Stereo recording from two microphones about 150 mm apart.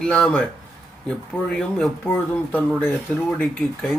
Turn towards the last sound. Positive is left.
turn(degrees=0)  # may be behind; listen again after turning